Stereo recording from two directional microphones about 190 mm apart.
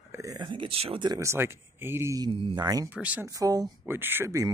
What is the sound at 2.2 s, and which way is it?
Speech, 30° right (ahead or behind).